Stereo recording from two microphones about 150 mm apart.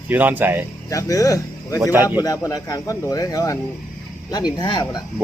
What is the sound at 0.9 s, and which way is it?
Speech, 20° left (ahead or behind).